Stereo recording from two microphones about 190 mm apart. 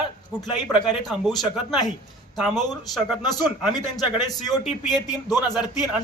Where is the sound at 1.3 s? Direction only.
20° left (ahead or behind).